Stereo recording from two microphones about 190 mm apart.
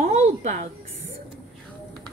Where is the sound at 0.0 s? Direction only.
35° right (ahead or behind).